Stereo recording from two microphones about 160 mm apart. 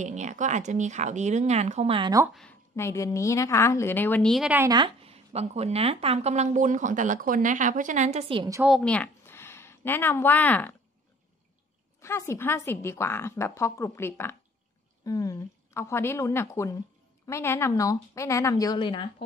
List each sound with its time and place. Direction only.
0.0 s a woman's voice: 50° right (ahead or behind)
2.7 s a woman's voice: 20° left (ahead or behind)
4.3 s speech: centre (ahead or behind)
4.6 s a woman's voice: 30° right (ahead or behind)
8.6 s speech: 5° left (ahead or behind)
12.0 s a woman's voice: 15° left (ahead or behind)